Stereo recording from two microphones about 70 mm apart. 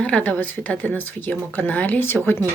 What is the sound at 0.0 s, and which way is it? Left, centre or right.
Speech, centre.